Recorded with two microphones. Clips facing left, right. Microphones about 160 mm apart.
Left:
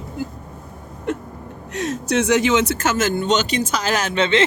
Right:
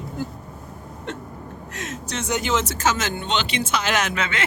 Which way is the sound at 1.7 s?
35° left (ahead or behind).